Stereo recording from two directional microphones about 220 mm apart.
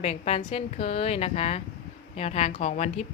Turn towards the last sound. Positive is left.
turn(degrees=30)  # may be behind; listen again after turning